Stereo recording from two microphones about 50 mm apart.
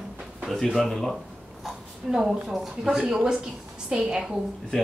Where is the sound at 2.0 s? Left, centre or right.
Centre.